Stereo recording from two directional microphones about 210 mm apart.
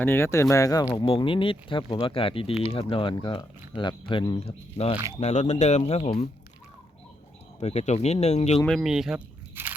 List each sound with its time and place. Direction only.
0.0 s speech: 10° left (ahead or behind); by 6.2 s 30° left (ahead or behind)
7.6 s speech: 30° left (ahead or behind)
8.6 s speech: centre (ahead or behind)